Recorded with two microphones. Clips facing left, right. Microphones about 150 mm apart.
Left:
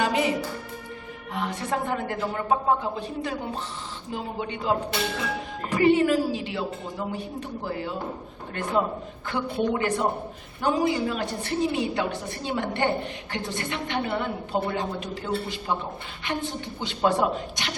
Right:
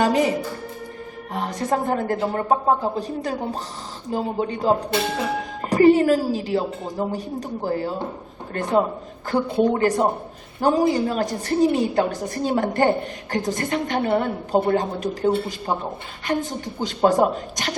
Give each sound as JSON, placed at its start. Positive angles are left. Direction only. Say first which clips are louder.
{"t": 0.0, "sound": "speech", "louder": "right 5 dB", "side_deg": -40}
{"t": 9.3, "sound": "a woman's voice", "louder": "right 6 dB", "side_deg": -40}